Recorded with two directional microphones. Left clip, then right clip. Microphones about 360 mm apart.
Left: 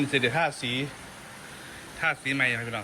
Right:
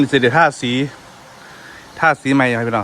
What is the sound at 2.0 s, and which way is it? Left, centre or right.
Speech, right.